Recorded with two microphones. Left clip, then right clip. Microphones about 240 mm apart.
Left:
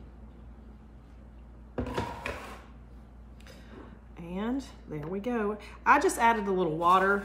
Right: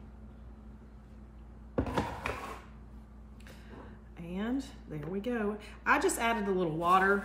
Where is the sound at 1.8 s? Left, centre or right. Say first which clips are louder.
Left 2 dB; right.